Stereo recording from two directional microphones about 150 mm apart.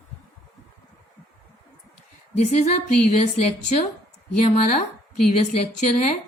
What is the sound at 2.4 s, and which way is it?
A woman's voice, 50° left (ahead or behind).